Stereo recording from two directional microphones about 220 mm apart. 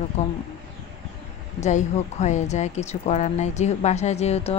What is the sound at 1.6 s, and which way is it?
Speech, 30° left (ahead or behind).